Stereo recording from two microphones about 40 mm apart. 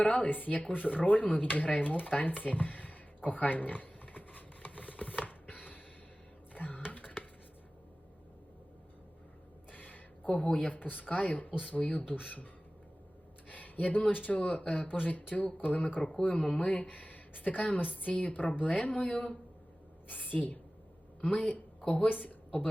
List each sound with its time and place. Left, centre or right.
0.0 s speech: left
5.2 s a sound: left
9.7 s a sound: left
10.5 s a woman's voice: left
10.8 s speech: left
13.5 s speech: left
14.8 s a woman's voice: left
20.1 s a woman's voice: left
21.2 s a woman's voice: left
22.1 s speech: left